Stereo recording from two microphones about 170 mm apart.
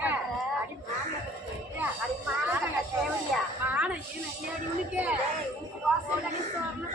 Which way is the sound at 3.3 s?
Centre (ahead or behind).